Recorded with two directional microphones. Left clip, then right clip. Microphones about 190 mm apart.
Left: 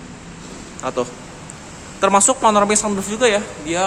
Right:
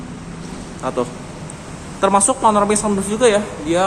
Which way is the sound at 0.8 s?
15° left (ahead or behind).